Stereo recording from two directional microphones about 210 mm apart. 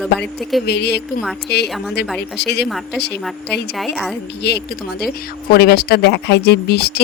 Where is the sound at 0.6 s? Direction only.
50° left (ahead or behind).